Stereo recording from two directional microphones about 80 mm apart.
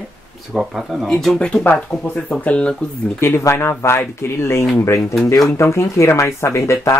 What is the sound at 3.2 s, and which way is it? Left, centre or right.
Speech, left.